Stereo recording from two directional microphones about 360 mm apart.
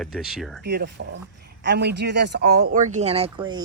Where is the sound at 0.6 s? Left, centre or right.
Right.